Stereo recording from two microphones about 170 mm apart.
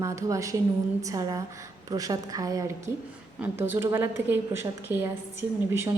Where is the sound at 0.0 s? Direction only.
20° right (ahead or behind).